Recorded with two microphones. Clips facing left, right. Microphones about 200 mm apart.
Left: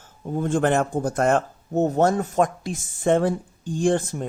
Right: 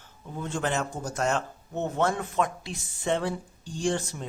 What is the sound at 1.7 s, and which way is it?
Speech, 40° left (ahead or behind).